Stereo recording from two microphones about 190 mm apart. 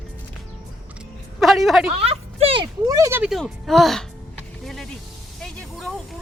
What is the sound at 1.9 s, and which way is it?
Speech, 30° right (ahead or behind).